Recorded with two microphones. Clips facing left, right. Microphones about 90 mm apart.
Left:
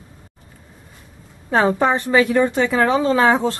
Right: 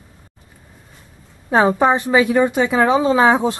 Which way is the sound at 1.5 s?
10° right (ahead or behind).